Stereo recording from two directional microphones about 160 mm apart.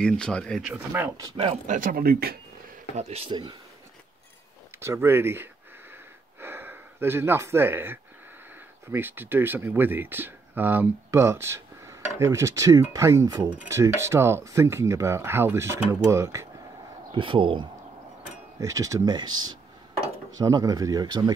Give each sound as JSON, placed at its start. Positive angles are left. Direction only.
{"t": 0.0, "sound": "speech", "side_deg": 5}
{"t": 0.9, "sound": "speech", "side_deg": -20}
{"t": 1.4, "sound": "speech", "side_deg": -45}
{"t": 3.0, "sound": "speech", "side_deg": -40}
{"t": 4.7, "sound": "speech", "side_deg": -15}
{"t": 17.1, "sound": "speech", "side_deg": -30}
{"t": 18.6, "sound": "speech", "side_deg": -20}